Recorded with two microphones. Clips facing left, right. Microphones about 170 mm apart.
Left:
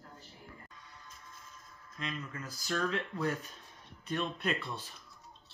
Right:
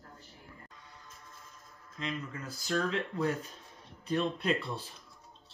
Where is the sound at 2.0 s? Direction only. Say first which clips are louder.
Right 3 dB; 25° right (ahead or behind).